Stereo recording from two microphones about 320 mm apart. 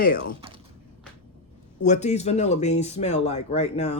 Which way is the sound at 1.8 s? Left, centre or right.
Left.